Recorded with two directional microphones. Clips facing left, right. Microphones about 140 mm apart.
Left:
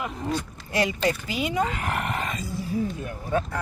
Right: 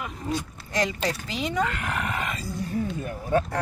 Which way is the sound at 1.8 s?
30° left (ahead or behind).